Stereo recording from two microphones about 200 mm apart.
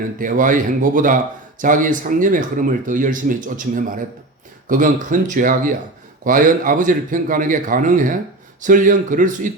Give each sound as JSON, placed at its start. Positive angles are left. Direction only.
{"t": 0.2, "sound": "speech", "side_deg": -40}